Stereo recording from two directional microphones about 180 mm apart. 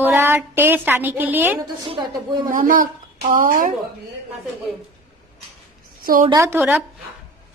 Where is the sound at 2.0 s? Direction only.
25° right (ahead or behind).